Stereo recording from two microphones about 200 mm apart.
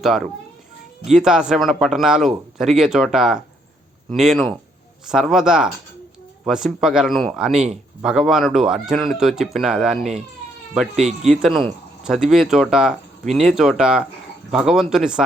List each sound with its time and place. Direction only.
1.0 s speech: 5° right (ahead or behind)